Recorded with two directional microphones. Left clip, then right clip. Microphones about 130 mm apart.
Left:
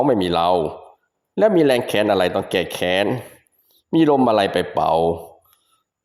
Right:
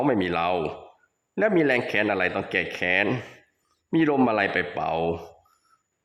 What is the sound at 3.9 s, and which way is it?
Speech, 35° left (ahead or behind).